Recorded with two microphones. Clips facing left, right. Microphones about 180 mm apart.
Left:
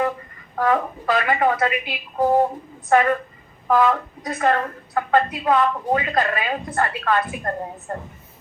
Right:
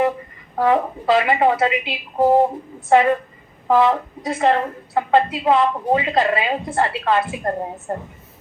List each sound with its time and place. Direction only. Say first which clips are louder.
0.5 s a woman's voice: right 3 dB; 20° right (ahead or behind)